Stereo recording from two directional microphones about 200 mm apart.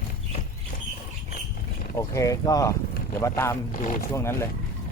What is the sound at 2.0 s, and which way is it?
Speech, 15° left (ahead or behind).